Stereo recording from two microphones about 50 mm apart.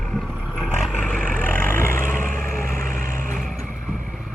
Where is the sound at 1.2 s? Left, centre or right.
Left.